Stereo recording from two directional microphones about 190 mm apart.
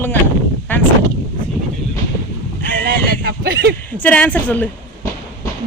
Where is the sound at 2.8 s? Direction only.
55° right (ahead or behind).